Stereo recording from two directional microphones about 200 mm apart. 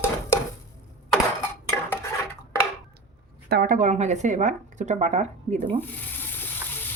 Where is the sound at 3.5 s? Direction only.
45° right (ahead or behind).